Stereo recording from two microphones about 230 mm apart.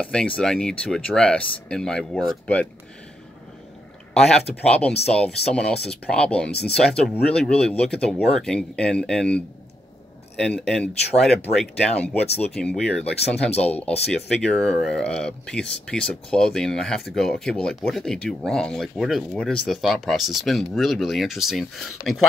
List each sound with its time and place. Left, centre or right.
0.0 s speech: centre
4.6 s speech: centre
10.4 s speech: centre
13.2 s speech: left
13.6 s speech: centre